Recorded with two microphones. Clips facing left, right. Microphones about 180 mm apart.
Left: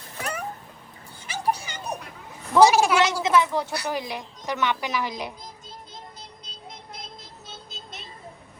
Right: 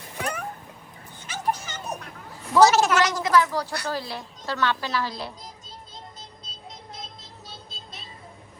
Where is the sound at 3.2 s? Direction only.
20° left (ahead or behind).